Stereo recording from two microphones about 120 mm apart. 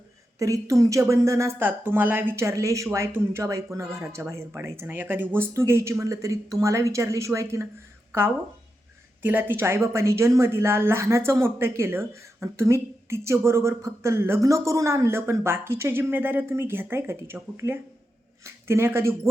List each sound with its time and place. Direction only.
0.3 s speech: 25° right (ahead or behind)